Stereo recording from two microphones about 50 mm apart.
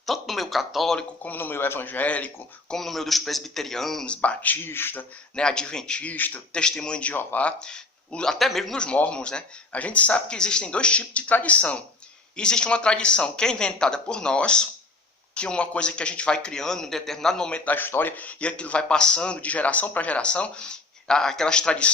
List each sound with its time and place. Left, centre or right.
0.0 s a sound: centre
1.2 s a man's voice: left
2.0 s speech: left
2.6 s speech: centre
4.0 s a man's voice: left
4.5 s a man's voice: left
5.4 s a man's voice: centre
6.1 s speech: left
6.5 s speech: centre
7.1 s speech: left
7.6 s speech: centre
8.4 s a man's voice: centre
9.0 s a man's voice: centre
17.7 s a man's voice: left